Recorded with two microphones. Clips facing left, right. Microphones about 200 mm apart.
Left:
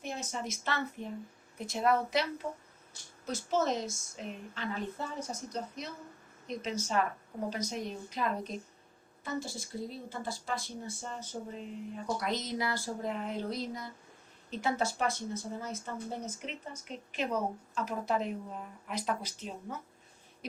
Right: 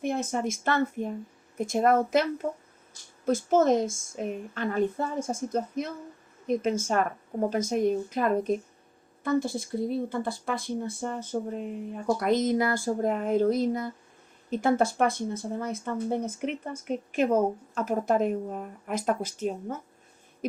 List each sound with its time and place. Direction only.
0.0 s speech: 55° right (ahead or behind)